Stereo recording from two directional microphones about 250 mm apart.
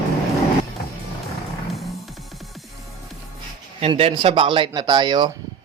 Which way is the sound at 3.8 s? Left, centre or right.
Right.